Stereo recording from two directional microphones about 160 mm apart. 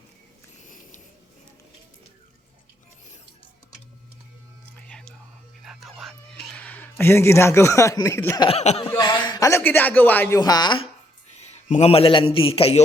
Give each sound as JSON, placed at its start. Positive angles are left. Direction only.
{"t": 0.7, "sound": "a sound", "side_deg": 50}
{"t": 4.9, "sound": "whispering", "side_deg": 5}
{"t": 5.6, "sound": "speech", "side_deg": 0}
{"t": 8.4, "sound": "chuckle", "side_deg": 40}
{"t": 8.9, "sound": "a man's voice", "side_deg": 25}
{"t": 11.3, "sound": "a man's voice", "side_deg": 45}